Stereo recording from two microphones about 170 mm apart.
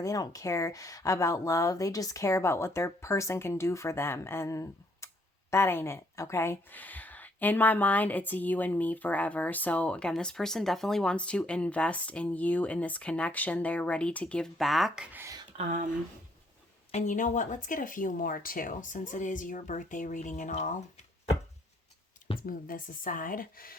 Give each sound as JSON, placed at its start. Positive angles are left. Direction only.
{"t": 0.0, "sound": "a woman's voice", "side_deg": 20}
{"t": 15.5, "sound": "speech", "side_deg": -45}
{"t": 16.9, "sound": "speech", "side_deg": 45}
{"t": 22.4, "sound": "speech", "side_deg": 55}